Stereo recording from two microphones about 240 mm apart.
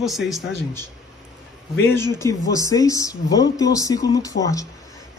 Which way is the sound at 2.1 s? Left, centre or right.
Centre.